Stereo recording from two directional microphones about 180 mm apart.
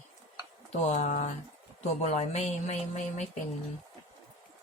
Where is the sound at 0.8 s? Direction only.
40° left (ahead or behind).